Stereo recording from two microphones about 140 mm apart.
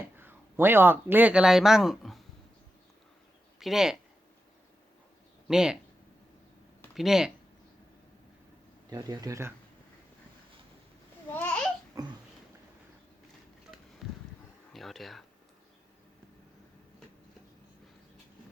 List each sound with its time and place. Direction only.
0.2 s speech: 15° right (ahead or behind); by 2.2 s centre (ahead or behind)
3.6 s speech: 5° right (ahead or behind)
5.5 s speech: 5° right (ahead or behind)
6.9 s speech: centre (ahead or behind)
8.9 s speech: 25° right (ahead or behind)
11.3 s babbling: 10° left (ahead or behind)
12.0 s a sound: 25° right (ahead or behind)
14.0 s a sound: centre (ahead or behind)